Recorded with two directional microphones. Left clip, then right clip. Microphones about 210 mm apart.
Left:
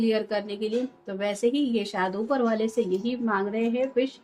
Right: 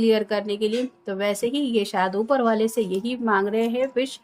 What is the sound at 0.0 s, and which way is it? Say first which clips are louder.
A woman's voice: right 5 dB; 55° right (ahead or behind).